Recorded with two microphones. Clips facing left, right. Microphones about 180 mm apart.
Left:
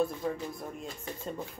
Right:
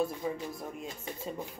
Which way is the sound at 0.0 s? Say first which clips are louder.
Left 1 dB; centre (ahead or behind).